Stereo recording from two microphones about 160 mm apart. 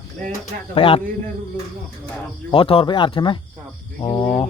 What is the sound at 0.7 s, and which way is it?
Speech, 35° left (ahead or behind).